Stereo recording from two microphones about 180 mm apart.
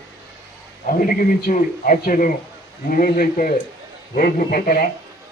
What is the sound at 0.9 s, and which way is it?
A man's voice, 50° left (ahead or behind).